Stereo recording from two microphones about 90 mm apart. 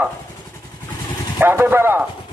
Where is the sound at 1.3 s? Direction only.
25° right (ahead or behind).